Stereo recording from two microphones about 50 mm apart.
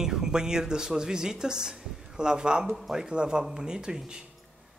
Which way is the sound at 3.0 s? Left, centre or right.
Centre.